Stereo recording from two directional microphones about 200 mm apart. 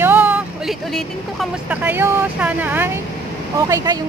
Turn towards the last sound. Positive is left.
turn(degrees=-15)  # may be behind; listen again after turning